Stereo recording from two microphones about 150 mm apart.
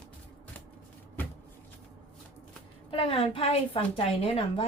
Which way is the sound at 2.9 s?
35° left (ahead or behind).